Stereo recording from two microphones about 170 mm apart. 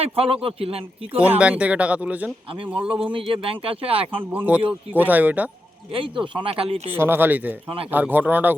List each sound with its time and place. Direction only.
0.0 s speech: 35° right (ahead or behind)
1.4 s speech: 5° right (ahead or behind)
3.1 s speech: 30° right (ahead or behind)
4.3 s speech: 10° right (ahead or behind)
5.9 s speech: 30° right (ahead or behind)
6.9 s speech: 15° right (ahead or behind)